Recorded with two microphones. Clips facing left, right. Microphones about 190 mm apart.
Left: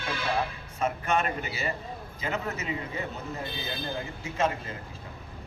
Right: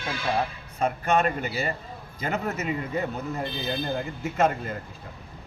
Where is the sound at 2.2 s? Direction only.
50° right (ahead or behind).